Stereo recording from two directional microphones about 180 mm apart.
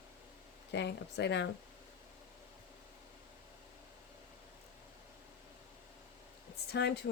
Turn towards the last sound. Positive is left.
turn(degrees=70)  # may be behind; listen again after turning